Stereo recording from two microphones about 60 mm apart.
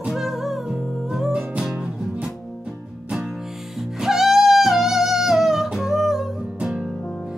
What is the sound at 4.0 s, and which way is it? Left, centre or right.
Music, centre.